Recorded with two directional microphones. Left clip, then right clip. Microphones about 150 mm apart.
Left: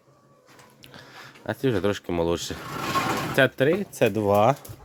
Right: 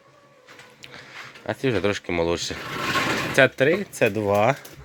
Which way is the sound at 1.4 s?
30° left (ahead or behind).